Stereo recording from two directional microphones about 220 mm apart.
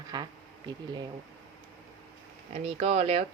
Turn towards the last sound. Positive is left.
turn(degrees=-30)  # may be behind; listen again after turning